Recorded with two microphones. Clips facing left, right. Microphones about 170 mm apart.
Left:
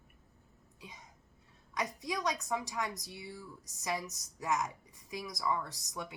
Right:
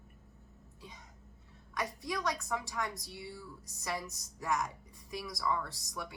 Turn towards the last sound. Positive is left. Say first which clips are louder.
# even
turn(degrees=20)  # may be behind; listen again after turning